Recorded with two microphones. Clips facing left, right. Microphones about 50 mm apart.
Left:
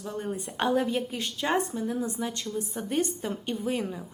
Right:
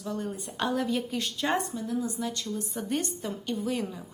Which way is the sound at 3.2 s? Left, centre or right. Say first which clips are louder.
Left 1 dB; left.